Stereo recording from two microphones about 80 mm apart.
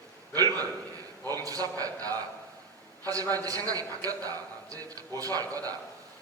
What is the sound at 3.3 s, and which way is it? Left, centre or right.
A man's voice, right.